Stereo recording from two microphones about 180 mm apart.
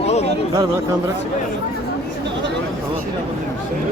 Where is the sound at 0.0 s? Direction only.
35° left (ahead or behind).